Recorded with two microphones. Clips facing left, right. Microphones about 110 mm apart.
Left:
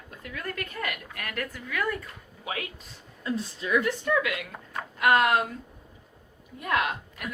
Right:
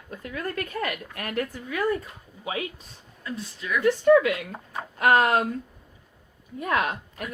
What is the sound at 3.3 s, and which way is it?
Speech, 30° left (ahead or behind).